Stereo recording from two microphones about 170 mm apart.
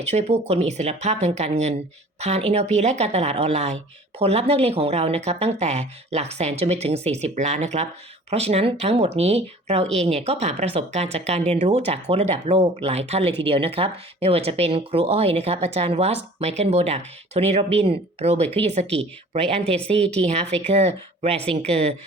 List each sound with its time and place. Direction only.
0.1 s speech: 40° right (ahead or behind)